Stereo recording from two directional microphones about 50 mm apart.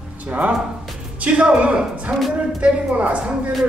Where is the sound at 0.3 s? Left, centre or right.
Right.